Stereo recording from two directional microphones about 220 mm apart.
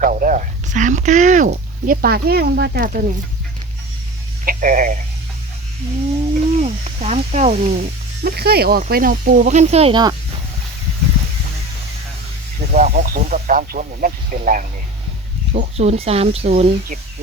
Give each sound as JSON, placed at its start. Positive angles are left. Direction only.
{"t": 0.0, "sound": "speech", "side_deg": -35}
{"t": 4.4, "sound": "speech", "side_deg": -35}
{"t": 6.6, "sound": "speech", "side_deg": -30}
{"t": 8.2, "sound": "speech", "side_deg": -45}
{"t": 12.7, "sound": "speech", "side_deg": -35}